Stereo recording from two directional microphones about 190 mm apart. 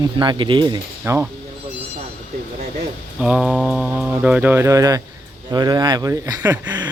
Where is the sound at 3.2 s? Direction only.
5° right (ahead or behind).